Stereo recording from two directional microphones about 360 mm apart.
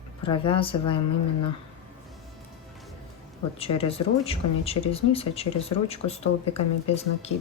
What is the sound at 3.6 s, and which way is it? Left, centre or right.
Speech, centre.